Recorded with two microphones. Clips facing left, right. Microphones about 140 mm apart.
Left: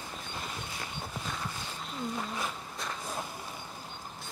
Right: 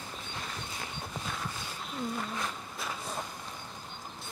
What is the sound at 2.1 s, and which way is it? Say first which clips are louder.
Music: even; 5° left (ahead or behind).